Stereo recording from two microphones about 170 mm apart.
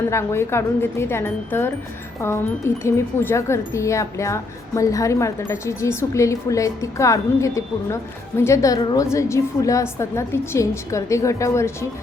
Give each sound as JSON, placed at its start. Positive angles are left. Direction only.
{"t": 0.1, "sound": "a woman's voice", "side_deg": 15}